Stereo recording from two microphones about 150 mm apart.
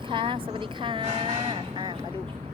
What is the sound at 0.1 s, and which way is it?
Speech, 35° right (ahead or behind).